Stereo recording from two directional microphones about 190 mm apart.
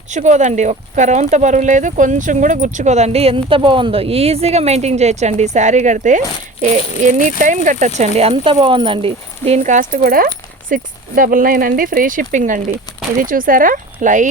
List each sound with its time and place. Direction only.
0.1 s speech: 40° right (ahead or behind)